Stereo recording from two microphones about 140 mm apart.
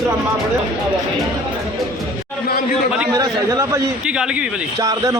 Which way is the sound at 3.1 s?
25° right (ahead or behind).